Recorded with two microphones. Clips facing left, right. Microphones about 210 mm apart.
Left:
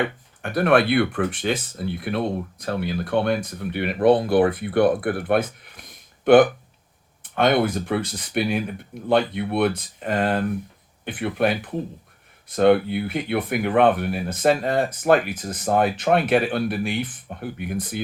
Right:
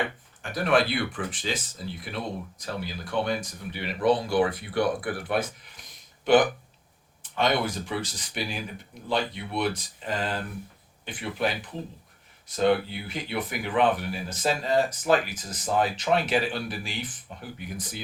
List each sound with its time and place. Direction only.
0.4 s speech: 60° left (ahead or behind)